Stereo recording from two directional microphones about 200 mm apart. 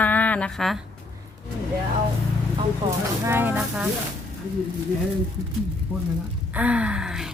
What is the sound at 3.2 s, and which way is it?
Speech, 10° right (ahead or behind).